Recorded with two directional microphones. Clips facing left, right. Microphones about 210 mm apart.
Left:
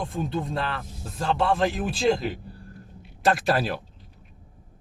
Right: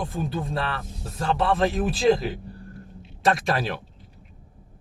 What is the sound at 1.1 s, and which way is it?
A man's voice, centre (ahead or behind).